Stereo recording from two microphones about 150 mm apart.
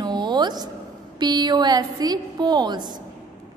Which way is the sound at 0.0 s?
30° right (ahead or behind).